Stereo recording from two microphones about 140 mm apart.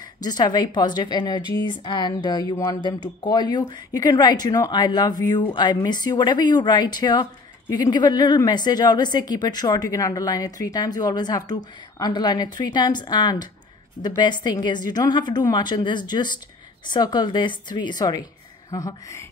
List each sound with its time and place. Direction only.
0.2 s a woman's voice: 30° left (ahead or behind)